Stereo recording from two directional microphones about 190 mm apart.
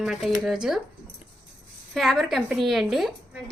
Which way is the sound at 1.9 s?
Centre (ahead or behind).